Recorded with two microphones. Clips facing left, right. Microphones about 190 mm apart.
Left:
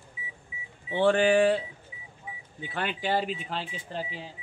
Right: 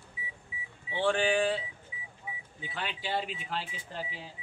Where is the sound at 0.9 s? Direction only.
55° left (ahead or behind).